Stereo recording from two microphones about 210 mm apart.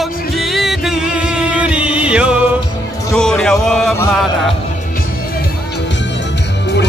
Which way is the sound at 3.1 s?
5° left (ahead or behind).